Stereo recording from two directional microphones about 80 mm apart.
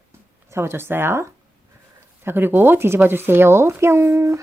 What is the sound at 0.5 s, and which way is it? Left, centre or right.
Speech, right.